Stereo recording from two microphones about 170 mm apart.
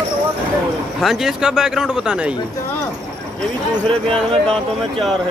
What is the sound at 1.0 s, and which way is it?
Speech, 5° right (ahead or behind).